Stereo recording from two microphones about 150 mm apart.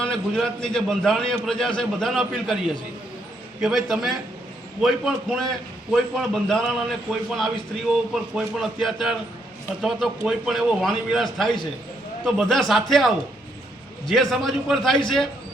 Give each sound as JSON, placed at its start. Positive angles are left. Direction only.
{"t": 0.0, "sound": "a man's voice", "side_deg": 5}
{"t": 3.6, "sound": "a man's voice", "side_deg": -5}